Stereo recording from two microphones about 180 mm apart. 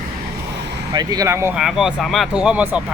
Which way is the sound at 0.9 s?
20° right (ahead or behind).